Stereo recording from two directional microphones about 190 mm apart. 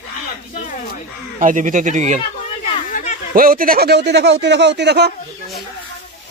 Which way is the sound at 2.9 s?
40° left (ahead or behind).